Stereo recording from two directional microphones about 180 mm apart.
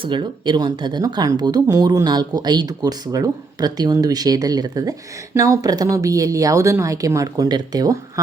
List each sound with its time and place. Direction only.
0.0 s speech: 25° right (ahead or behind)